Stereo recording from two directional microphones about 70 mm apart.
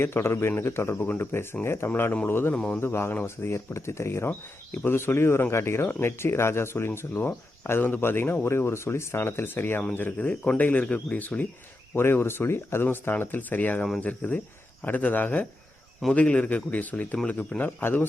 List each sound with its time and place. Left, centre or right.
0.0 s speech: left
2.6 s speech: centre
2.8 s speech: left
7.1 s speech: left
11.9 s speech: left